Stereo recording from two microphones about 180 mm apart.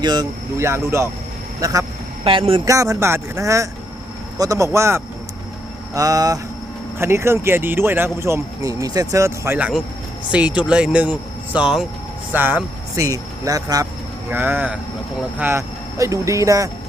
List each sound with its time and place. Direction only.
0.0 s speech: 25° right (ahead or behind)
2.2 s speech: 30° right (ahead or behind)
2.6 s speech: 20° right (ahead or behind)